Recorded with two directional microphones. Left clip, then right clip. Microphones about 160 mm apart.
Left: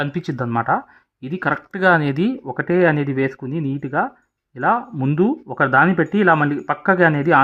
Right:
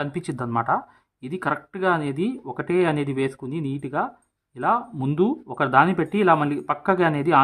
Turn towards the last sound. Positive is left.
turn(degrees=30)  # may be behind; listen again after turning